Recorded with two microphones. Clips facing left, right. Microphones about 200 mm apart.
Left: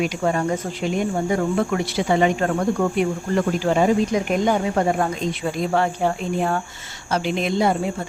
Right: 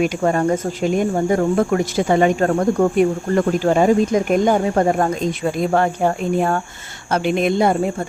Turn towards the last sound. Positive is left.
turn(degrees=-55)  # may be behind; listen again after turning